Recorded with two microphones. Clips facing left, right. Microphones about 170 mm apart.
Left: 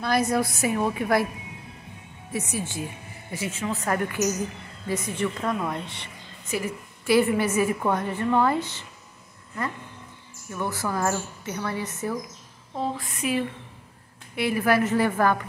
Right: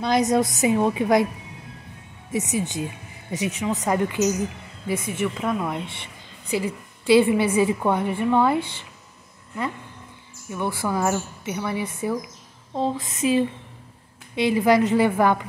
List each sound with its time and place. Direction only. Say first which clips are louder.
0.0 s a woman's voice: right 3 dB; 20° right (ahead or behind)
2.5 s a woman's voice: right 5 dB; 20° right (ahead or behind)
6.5 s a woman's voice: right 4 dB; 20° right (ahead or behind)
10.5 s a woman's voice: right 3 dB; 15° right (ahead or behind)